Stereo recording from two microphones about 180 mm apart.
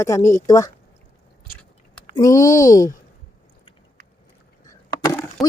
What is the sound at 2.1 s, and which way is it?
Speech, 20° left (ahead or behind).